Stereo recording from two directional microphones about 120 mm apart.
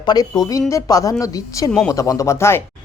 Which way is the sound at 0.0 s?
35° left (ahead or behind).